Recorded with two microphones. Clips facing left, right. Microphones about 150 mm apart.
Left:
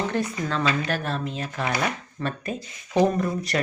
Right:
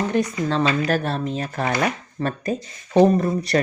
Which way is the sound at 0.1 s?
15° right (ahead or behind).